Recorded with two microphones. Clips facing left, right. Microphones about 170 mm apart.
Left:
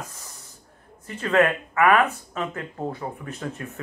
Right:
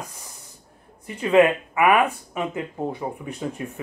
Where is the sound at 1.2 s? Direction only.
20° right (ahead or behind).